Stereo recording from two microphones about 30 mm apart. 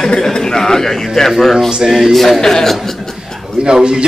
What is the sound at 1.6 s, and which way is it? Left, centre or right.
Speech, centre.